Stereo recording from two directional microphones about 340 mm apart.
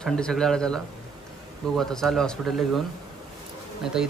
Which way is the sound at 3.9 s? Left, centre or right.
Centre.